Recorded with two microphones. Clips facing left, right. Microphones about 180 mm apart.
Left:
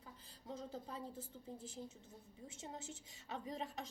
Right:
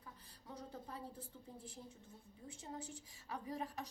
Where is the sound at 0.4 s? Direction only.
25° left (ahead or behind).